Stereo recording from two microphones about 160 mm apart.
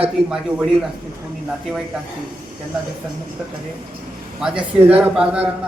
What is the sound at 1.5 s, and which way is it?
Speech, 5° right (ahead or behind).